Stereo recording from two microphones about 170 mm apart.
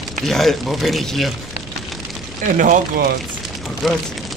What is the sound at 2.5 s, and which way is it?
Speech, 50° right (ahead or behind).